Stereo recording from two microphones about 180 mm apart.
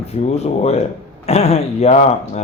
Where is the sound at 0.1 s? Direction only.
35° left (ahead or behind).